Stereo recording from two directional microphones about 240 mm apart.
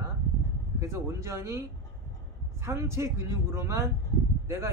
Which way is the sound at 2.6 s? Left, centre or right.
Centre.